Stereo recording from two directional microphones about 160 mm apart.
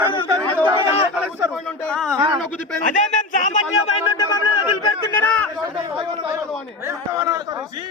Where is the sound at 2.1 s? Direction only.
30° right (ahead or behind).